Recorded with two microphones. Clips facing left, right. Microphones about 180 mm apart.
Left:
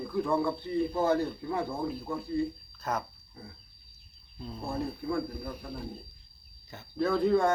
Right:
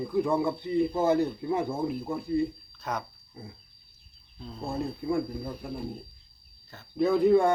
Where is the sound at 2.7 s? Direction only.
5° left (ahead or behind).